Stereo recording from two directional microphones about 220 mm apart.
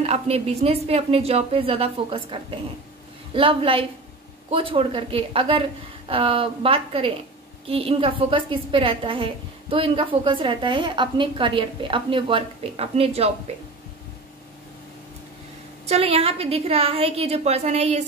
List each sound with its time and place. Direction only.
0.0 s a woman's voice: 25° right (ahead or behind)
15.9 s a woman's voice: 25° right (ahead or behind)